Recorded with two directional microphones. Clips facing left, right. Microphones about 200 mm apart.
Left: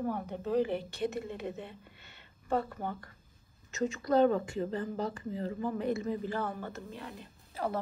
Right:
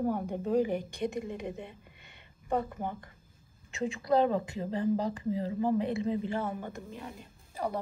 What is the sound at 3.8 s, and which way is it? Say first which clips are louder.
Speech: left 1 dB; 30° right (ahead or behind).